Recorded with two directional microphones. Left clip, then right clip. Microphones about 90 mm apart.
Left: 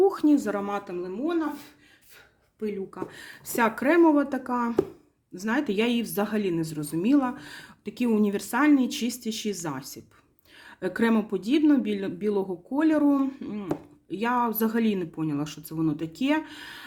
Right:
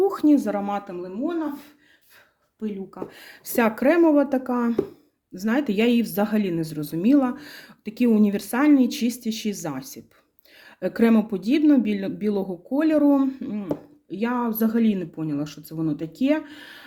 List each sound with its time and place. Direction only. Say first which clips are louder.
0.0 s a sound: even; 40° right (ahead or behind)
0.3 s speech: right 3 dB; 25° right (ahead or behind)
1.1 s speech: right 1 dB; centre (ahead or behind)
2.9 s speech: right 1 dB; 30° right (ahead or behind)
14.1 s speech: left 1 dB; 10° right (ahead or behind)